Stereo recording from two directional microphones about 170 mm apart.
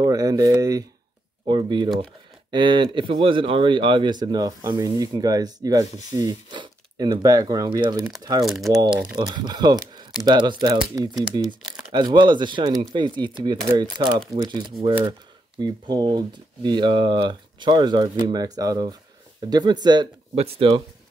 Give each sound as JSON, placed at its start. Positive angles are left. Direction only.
{"t": 0.0, "sound": "speech", "side_deg": -20}
{"t": 8.4, "sound": "speech", "side_deg": 0}
{"t": 8.7, "sound": "speech", "side_deg": -25}
{"t": 11.9, "sound": "speech", "side_deg": -25}
{"t": 15.6, "sound": "speech", "side_deg": -25}
{"t": 20.3, "sound": "speech", "side_deg": -35}